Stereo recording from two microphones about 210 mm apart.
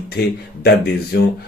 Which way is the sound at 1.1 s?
50° left (ahead or behind).